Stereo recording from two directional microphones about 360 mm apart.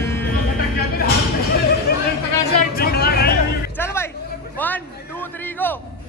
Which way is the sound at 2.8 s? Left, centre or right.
Left.